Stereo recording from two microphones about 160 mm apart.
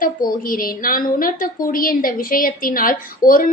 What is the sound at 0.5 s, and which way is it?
A woman's voice, 60° left (ahead or behind).